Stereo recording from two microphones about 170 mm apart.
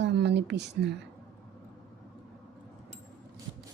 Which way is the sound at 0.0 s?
85° right.